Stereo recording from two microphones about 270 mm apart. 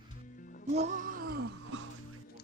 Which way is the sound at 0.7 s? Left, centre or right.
Right.